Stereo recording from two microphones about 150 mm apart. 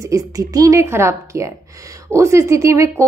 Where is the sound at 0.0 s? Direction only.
20° right (ahead or behind).